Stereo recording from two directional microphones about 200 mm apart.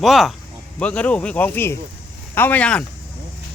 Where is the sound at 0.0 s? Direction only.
Centre (ahead or behind).